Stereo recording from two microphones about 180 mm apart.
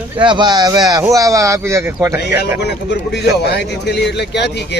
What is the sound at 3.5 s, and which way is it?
Speech, 65° left (ahead or behind).